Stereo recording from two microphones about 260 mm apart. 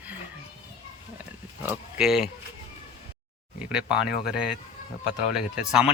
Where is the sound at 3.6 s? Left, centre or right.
Centre.